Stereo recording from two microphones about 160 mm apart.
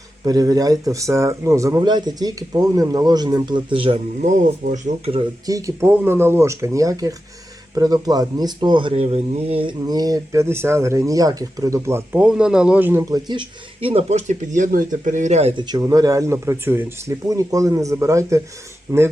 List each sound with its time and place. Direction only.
0.3 s speech: 25° right (ahead or behind); by 5.2 s 45° right (ahead or behind)
5.5 s speech: 20° right (ahead or behind); by 9.7 s 35° right (ahead or behind)
9.8 s speech: 25° right (ahead or behind); by 15.6 s 40° right (ahead or behind)
15.6 s speech: 25° right (ahead or behind)